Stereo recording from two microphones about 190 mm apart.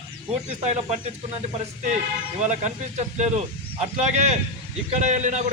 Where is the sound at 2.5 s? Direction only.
35° right (ahead or behind).